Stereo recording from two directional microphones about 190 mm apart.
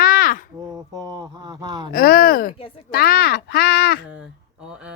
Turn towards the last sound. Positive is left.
turn(degrees=55)  # may be behind; listen again after turning